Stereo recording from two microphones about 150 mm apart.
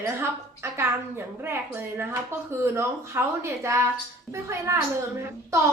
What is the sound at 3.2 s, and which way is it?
A woman's voice, 15° right (ahead or behind).